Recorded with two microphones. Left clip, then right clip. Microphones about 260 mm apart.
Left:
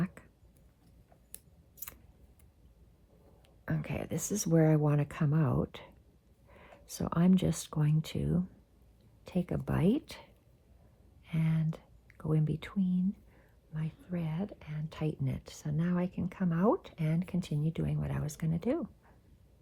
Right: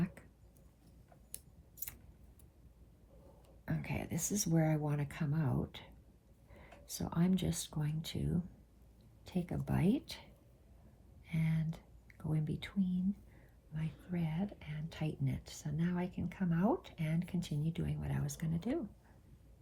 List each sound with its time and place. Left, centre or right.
3.7 s speech: left
7.1 s speech: left
11.3 s speech: left